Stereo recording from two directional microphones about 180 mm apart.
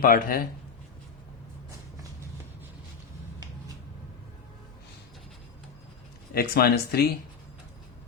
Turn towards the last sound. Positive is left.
turn(degrees=60)  # may be behind; listen again after turning